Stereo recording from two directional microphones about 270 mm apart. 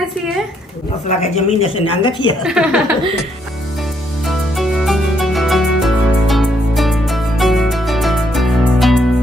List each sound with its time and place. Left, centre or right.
1.0 s speech: left
2.4 s a woman's voice: centre
4.3 s music: centre